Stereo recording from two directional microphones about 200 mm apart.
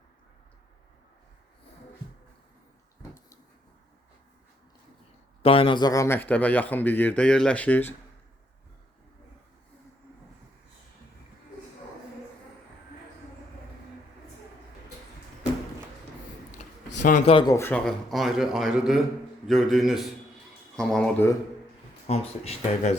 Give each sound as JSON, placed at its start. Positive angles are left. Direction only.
{"t": 5.4, "sound": "speech", "side_deg": 30}
{"t": 16.6, "sound": "a sound", "side_deg": 40}
{"t": 17.3, "sound": "a man's voice", "side_deg": 20}
{"t": 22.1, "sound": "speech", "side_deg": 30}